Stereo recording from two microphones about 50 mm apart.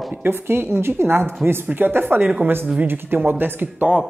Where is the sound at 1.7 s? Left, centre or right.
Right.